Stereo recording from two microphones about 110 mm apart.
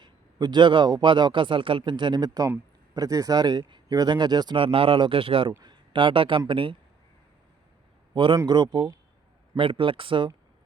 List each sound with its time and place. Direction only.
0.0 s speech: 40° right (ahead or behind)
8.1 s a man's voice: 45° right (ahead or behind)